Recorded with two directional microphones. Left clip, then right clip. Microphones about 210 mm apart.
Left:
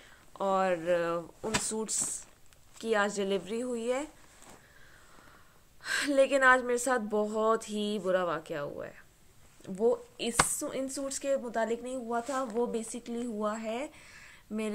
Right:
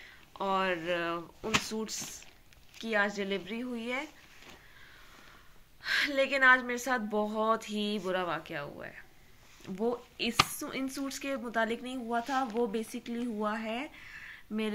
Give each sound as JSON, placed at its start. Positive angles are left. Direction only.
{"t": 0.3, "sound": "speech", "side_deg": 45}
{"t": 2.8, "sound": "a woman's voice", "side_deg": 55}
{"t": 5.9, "sound": "a woman's voice", "side_deg": 50}